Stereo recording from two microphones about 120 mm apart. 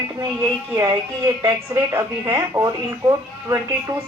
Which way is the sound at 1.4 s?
25° right (ahead or behind).